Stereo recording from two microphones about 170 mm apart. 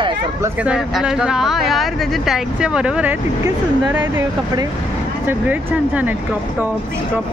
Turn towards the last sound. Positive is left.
turn(degrees=-10)  # may be behind; listen again after turning